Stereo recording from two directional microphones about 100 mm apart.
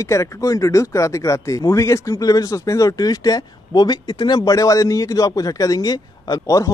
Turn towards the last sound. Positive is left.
turn(degrees=40)  # may be behind; listen again after turning